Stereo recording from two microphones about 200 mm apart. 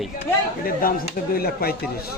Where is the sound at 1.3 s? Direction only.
50° left (ahead or behind).